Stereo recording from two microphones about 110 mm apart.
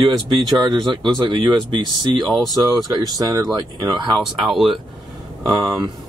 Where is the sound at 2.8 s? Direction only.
35° right (ahead or behind).